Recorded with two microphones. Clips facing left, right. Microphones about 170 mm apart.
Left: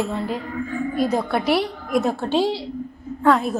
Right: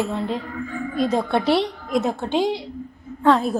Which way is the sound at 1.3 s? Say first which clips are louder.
Right 1 dB; 25° right (ahead or behind).